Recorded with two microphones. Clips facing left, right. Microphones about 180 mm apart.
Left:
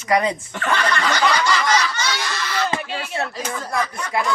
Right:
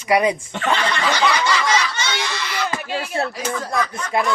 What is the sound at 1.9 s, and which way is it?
Crowd, 20° right (ahead or behind).